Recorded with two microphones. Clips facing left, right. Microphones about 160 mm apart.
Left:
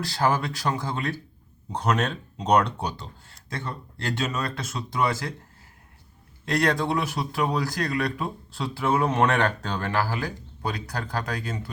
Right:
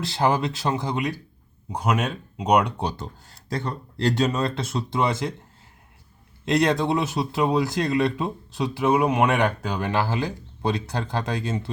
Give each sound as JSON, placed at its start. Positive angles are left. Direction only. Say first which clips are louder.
{"t": 0.0, "sound": "speech", "louder": "right 2 dB", "side_deg": -20}
{"t": 3.0, "sound": "speech", "louder": "right 6 dB", "side_deg": -35}
{"t": 6.4, "sound": "speech", "louder": "right 3 dB", "side_deg": -20}